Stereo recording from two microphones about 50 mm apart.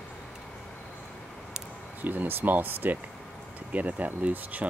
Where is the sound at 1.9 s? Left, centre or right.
Right.